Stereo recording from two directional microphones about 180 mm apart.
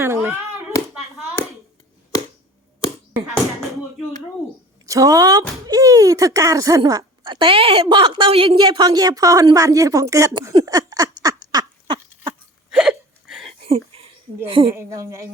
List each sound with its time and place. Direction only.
0.0 s hands: 15° right (ahead or behind)
4.9 s speech: 20° right (ahead or behind)
10.5 s a sound: 20° right (ahead or behind)
12.7 s hiccup: 5° right (ahead or behind)
13.6 s a sound: 35° right (ahead or behind)
14.4 s a woman's voice: 30° right (ahead or behind)
14.8 s a woman's voice: 15° right (ahead or behind)